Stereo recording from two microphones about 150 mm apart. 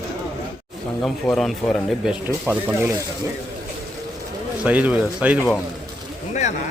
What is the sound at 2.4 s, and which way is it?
Speech, 15° right (ahead or behind).